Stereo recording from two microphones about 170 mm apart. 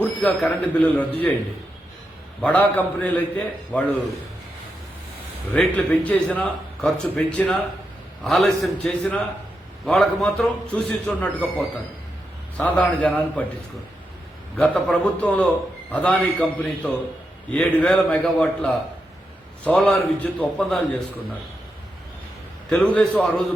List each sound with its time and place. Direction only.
0.0 s a man's voice: 5° left (ahead or behind)
2.4 s a man's voice: 10° left (ahead or behind)
5.5 s a man's voice: 10° left (ahead or behind)
14.5 s a man's voice: 5° left (ahead or behind)
22.7 s a man's voice: 5° left (ahead or behind)